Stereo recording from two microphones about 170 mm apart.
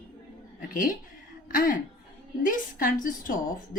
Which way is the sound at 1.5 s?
55° left (ahead or behind).